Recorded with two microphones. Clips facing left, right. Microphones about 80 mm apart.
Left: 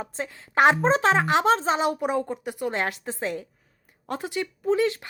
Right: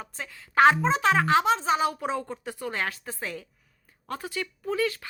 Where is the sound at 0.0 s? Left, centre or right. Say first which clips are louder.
Left 6 dB; left.